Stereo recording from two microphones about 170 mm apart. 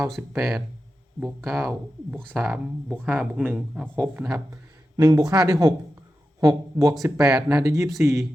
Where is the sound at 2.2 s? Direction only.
Centre (ahead or behind); by 6.9 s 20° right (ahead or behind).